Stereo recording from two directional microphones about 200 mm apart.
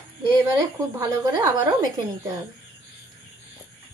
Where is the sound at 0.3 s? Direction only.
15° right (ahead or behind).